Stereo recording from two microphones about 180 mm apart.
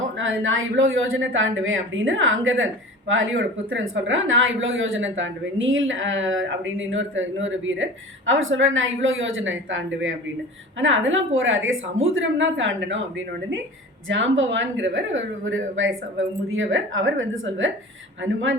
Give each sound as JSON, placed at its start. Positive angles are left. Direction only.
{"t": 0.2, "sound": "speech", "side_deg": -90}